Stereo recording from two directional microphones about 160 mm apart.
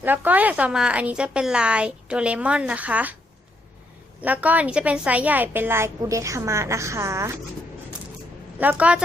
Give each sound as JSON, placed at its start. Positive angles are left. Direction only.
{"t": 0.0, "sound": "a woman's voice", "side_deg": -10}
{"t": 4.2, "sound": "a woman's voice", "side_deg": -10}
{"t": 8.5, "sound": "a woman's voice", "side_deg": -10}